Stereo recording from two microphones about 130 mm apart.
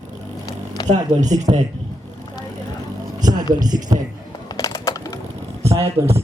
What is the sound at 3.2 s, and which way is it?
Speech, 30° right (ahead or behind).